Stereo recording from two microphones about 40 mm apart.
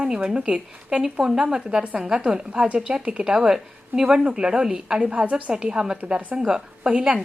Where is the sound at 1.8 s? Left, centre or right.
Right.